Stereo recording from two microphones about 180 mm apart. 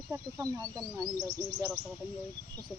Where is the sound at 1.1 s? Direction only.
15° right (ahead or behind).